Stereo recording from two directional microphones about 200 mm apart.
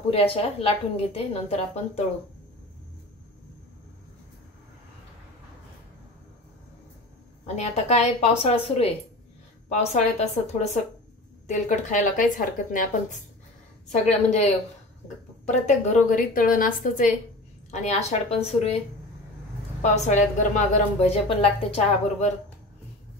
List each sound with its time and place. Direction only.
0.1 s a woman's voice: 30° left (ahead or behind)
7.4 s a woman's voice: 35° left (ahead or behind)
19.8 s a woman's voice: 35° left (ahead or behind)